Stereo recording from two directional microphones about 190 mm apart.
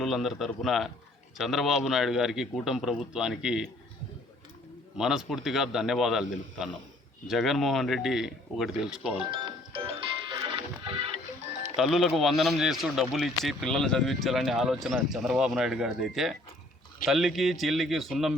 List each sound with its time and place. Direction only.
0.0 s a man's voice: centre (ahead or behind)
4.9 s a man's voice: 5° right (ahead or behind)
9.3 s music: 25° right (ahead or behind)
11.8 s a man's voice: centre (ahead or behind)